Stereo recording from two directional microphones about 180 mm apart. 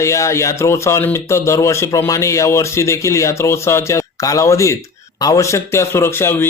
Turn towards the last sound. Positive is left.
turn(degrees=15)  # may be behind; listen again after turning